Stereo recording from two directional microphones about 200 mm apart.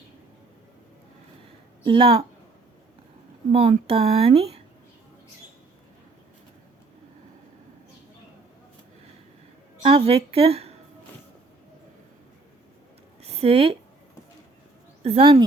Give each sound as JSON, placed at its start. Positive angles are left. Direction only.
{"t": 1.8, "sound": "a woman's voice", "side_deg": -25}
{"t": 3.5, "sound": "speech", "side_deg": -30}
{"t": 9.8, "sound": "speech", "side_deg": -30}
{"t": 13.2, "sound": "a sound", "side_deg": -30}
{"t": 15.0, "sound": "speech", "side_deg": -30}